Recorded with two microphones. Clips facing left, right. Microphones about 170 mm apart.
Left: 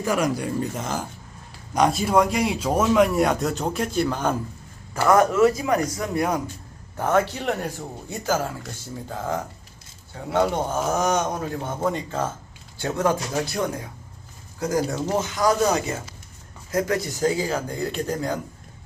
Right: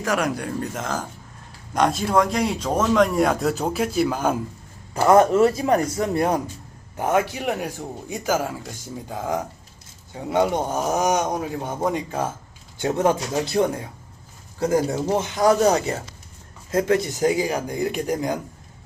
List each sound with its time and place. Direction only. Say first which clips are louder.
0.0 s speech: left 1 dB; 70° right (ahead or behind)
0.6 s speech: even; 5° left (ahead or behind)
4.9 s speech: right 2 dB; 25° right (ahead or behind)
6.9 s a man's voice: even; 15° right (ahead or behind)